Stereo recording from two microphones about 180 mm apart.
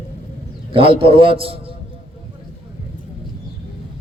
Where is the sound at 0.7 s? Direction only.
30° right (ahead or behind).